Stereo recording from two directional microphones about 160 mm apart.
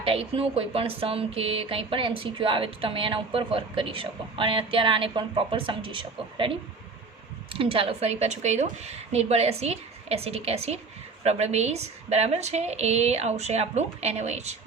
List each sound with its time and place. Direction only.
0.0 s a woman's voice: 35° right (ahead or behind)